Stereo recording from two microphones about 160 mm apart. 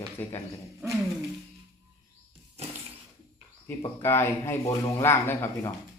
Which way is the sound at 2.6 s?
40° right (ahead or behind).